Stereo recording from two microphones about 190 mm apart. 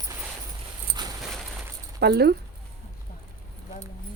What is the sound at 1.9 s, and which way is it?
Speech, 60° right (ahead or behind).